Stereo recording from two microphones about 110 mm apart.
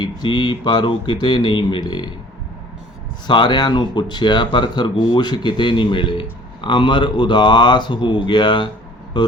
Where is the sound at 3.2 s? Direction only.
45° left (ahead or behind).